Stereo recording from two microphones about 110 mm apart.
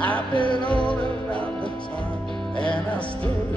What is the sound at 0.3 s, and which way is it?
Music, 45° left (ahead or behind).